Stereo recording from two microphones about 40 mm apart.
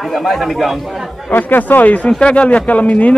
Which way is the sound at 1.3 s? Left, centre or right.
Left.